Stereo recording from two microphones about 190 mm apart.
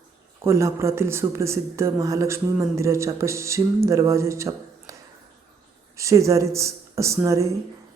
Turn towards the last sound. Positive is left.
turn(degrees=-15)  # may be behind; listen again after turning